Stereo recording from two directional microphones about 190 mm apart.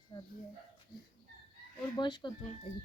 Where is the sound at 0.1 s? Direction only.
25° left (ahead or behind).